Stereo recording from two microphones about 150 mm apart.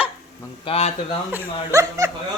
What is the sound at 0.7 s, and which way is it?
Speech, 45° left (ahead or behind).